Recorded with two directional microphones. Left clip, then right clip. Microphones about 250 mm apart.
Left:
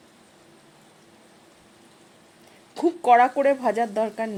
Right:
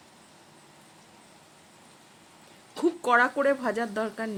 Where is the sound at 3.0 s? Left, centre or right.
Centre.